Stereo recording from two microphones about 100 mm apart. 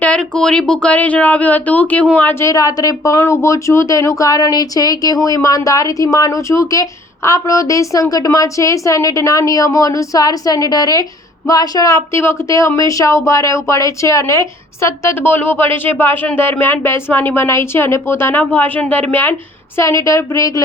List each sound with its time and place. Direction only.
0.0 s a sound: 10° left (ahead or behind)
0.7 s speech: 10° left (ahead or behind)
2.4 s speech: 35° left (ahead or behind)